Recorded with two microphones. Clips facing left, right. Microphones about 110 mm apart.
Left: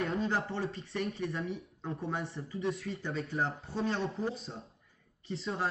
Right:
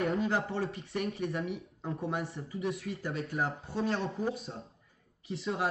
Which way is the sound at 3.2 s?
Centre (ahead or behind).